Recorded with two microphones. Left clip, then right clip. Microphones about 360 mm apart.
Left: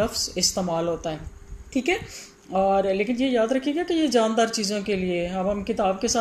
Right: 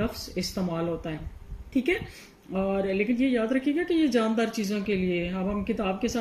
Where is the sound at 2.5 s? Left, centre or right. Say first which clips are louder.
Left 6 dB; left.